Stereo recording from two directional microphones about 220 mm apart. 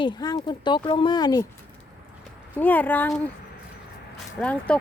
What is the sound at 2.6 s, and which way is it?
Speech, 10° left (ahead or behind).